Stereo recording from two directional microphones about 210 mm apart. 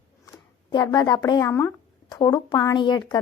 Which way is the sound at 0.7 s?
20° left (ahead or behind).